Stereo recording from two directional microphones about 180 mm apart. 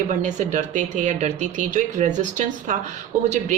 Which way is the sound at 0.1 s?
45° right (ahead or behind).